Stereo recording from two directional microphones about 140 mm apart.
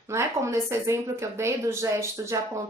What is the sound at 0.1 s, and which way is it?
A woman's voice, 20° right (ahead or behind).